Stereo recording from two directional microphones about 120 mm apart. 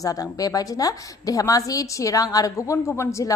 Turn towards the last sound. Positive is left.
turn(degrees=25)  # may be behind; listen again after turning